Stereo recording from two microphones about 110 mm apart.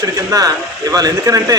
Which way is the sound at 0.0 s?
35° right (ahead or behind).